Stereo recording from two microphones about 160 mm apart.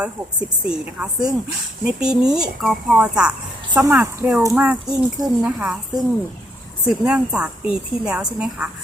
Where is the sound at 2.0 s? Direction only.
5° right (ahead or behind).